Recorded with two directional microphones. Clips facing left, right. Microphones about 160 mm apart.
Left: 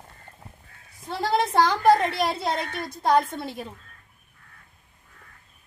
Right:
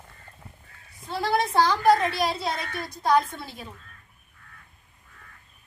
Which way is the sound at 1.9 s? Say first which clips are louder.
Left 1 dB; 55° left (ahead or behind).